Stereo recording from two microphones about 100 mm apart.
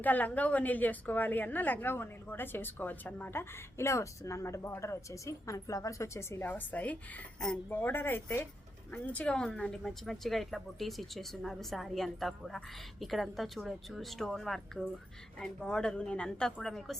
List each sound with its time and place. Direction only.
0.0 s a woman's voice: 15° left (ahead or behind)